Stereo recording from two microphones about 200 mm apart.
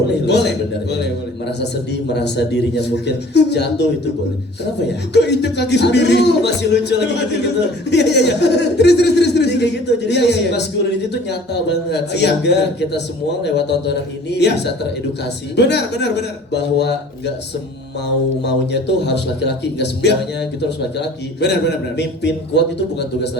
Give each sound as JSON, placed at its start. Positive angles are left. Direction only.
{"t": 0.1, "sound": "speech", "side_deg": 60}
{"t": 18.4, "sound": "speech", "side_deg": 60}
{"t": 21.9, "sound": "speech", "side_deg": 60}